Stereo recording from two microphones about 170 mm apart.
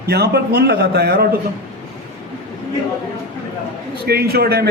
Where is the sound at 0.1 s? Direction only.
75° right (ahead or behind).